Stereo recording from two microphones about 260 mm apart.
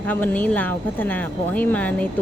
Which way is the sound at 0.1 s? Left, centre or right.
Centre.